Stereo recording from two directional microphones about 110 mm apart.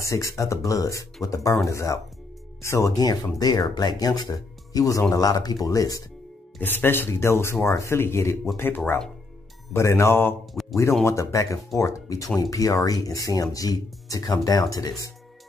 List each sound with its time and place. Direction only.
0.0 s speech: 30° left (ahead or behind)
6.6 s speech: 20° left (ahead or behind)
10.5 s a sound: centre (ahead or behind)
11.1 s speech: 30° left (ahead or behind)